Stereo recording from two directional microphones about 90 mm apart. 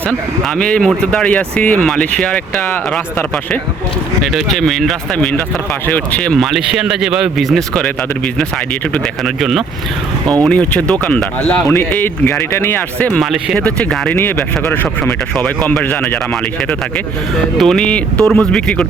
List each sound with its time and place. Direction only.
0.4 s speech: 10° left (ahead or behind)
4.2 s a man's voice: 5° left (ahead or behind)
6.3 s a man's voice: centre (ahead or behind)
9.2 s a man's voice: centre (ahead or behind)
10.3 s speech: 15° left (ahead or behind)
13.1 s a man's voice: 5° right (ahead or behind)
13.6 s speech: 15° left (ahead or behind)
17.6 s speech: 5° left (ahead or behind)